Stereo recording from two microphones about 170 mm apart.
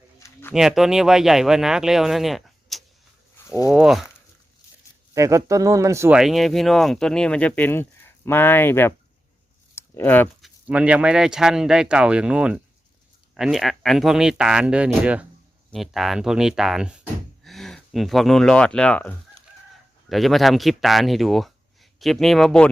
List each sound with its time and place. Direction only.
0.5 s speech: centre (ahead or behind)
5.1 s speech: 20° right (ahead or behind)
6.1 s speech: centre (ahead or behind)
9.7 s a sound: 10° left (ahead or behind)
10.4 s speech: 5° right (ahead or behind)